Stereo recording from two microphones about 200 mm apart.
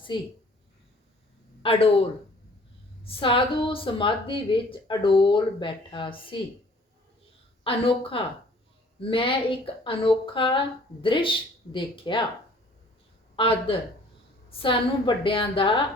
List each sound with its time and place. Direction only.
0.1 s speech: 20° left (ahead or behind)
1.6 s speech: 30° left (ahead or behind)
3.0 s speech: 25° left (ahead or behind)
7.6 s speech: 25° left (ahead or behind)
13.3 s speech: 25° left (ahead or behind)